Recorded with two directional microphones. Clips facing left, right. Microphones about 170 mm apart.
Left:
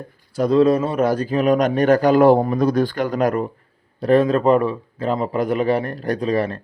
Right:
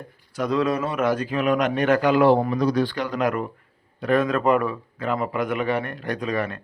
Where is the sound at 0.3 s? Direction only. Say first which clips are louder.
Left 7 dB; 30° left (ahead or behind).